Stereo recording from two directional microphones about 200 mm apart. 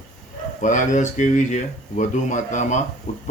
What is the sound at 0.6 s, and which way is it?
Speech, 40° left (ahead or behind).